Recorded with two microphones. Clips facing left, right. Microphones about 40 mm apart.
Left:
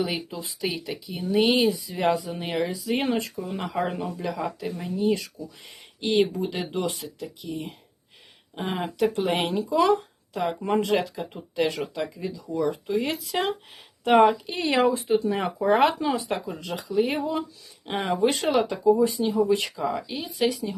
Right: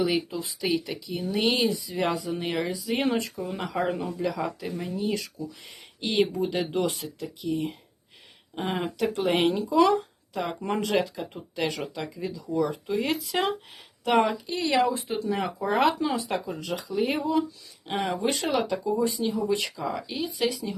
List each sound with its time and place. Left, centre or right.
0.0 s speech: centre
14.0 s speech: centre
14.3 s speech: left
14.9 s speech: centre